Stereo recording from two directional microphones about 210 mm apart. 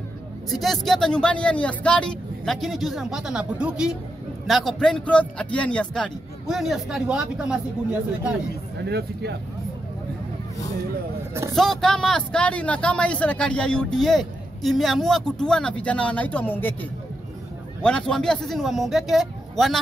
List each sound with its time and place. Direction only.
0.5 s speech: centre (ahead or behind)
8.8 s speech: 50° right (ahead or behind)
11.5 s speech: centre (ahead or behind)
17.8 s speech: 5° left (ahead or behind)